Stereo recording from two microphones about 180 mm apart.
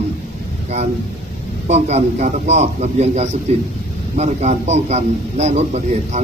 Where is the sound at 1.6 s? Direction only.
40° right (ahead or behind).